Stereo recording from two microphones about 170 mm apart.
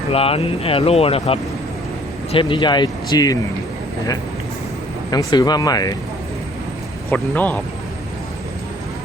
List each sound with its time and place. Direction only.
0.1 s speech: 35° left (ahead or behind)
5.1 s speech: 25° left (ahead or behind)
7.1 s a man's voice: 10° left (ahead or behind)